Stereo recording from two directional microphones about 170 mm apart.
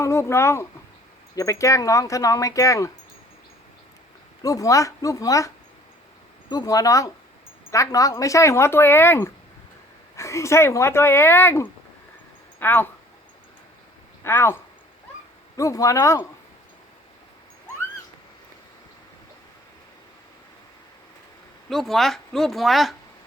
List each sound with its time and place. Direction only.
0.0 s speech: 15° left (ahead or behind)
4.4 s speech: 20° left (ahead or behind)
6.5 s speech: 20° left (ahead or behind)
14.3 s speech: 15° left (ahead or behind)
21.7 s speech: centre (ahead or behind)